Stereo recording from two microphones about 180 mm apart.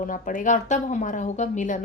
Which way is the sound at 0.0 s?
45° left (ahead or behind).